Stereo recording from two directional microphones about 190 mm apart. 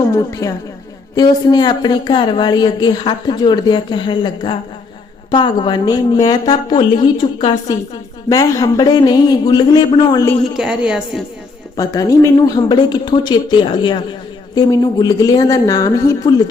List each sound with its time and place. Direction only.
0.1 s a woman's voice: 15° left (ahead or behind)
10.6 s a woman's voice: 5° right (ahead or behind)
11.8 s a woman's voice: 15° left (ahead or behind)